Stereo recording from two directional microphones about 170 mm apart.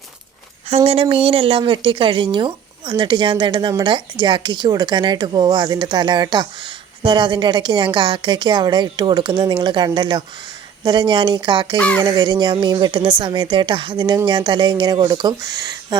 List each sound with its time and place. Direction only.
0.9 s speech: 35° right (ahead or behind)